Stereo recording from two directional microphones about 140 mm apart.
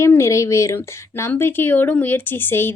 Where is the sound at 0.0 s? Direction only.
20° left (ahead or behind).